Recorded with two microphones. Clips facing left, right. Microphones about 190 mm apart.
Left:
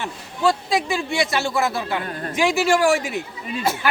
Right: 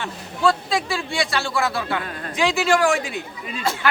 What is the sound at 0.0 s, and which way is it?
A man's voice, 20° left (ahead or behind).